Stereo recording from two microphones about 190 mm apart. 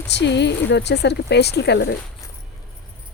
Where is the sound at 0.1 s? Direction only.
65° left (ahead or behind).